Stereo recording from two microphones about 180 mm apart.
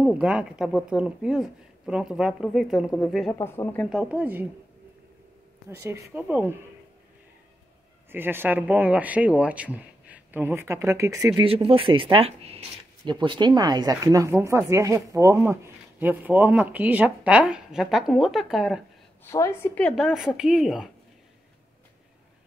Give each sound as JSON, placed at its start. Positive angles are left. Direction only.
{"t": 0.0, "sound": "speech", "side_deg": -5}
{"t": 3.3, "sound": "a woman's voice", "side_deg": 10}
{"t": 3.9, "sound": "speech", "side_deg": -5}
{"t": 5.7, "sound": "speech", "side_deg": -15}
{"t": 8.1, "sound": "speech", "side_deg": -10}
{"t": 11.4, "sound": "speech", "side_deg": -30}
{"t": 19.3, "sound": "a woman's voice", "side_deg": 15}
{"t": 20.1, "sound": "speech", "side_deg": -5}